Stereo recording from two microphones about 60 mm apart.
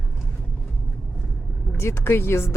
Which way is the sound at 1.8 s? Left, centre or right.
Left.